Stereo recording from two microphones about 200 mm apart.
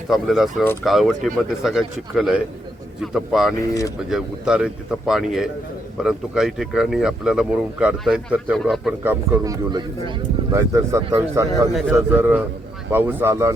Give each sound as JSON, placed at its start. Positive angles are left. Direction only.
{"t": 0.1, "sound": "speech", "side_deg": 0}
{"t": 3.6, "sound": "speech", "side_deg": 15}
{"t": 4.1, "sound": "speech", "side_deg": -5}